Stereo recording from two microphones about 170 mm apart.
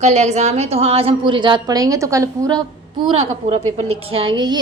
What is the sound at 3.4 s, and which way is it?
A woman's voice, 40° right (ahead or behind).